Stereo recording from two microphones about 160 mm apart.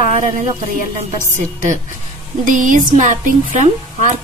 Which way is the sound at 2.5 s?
55° right (ahead or behind).